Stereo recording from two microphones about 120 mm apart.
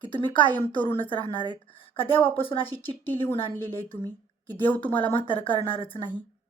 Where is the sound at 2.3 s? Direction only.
50° left (ahead or behind).